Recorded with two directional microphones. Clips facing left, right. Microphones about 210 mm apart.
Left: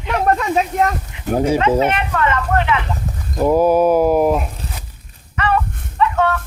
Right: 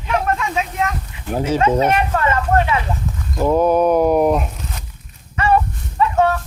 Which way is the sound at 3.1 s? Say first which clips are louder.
Right 1 dB; 35° left (ahead or behind).